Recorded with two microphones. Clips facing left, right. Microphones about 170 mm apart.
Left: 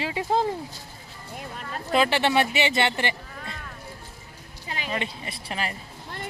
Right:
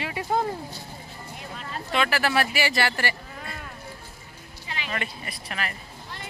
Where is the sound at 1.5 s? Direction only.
35° left (ahead or behind).